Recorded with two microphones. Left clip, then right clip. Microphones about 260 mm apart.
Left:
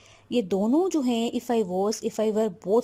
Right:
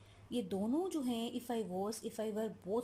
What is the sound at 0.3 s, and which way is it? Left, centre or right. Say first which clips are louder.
Speech: left 14 dB; left.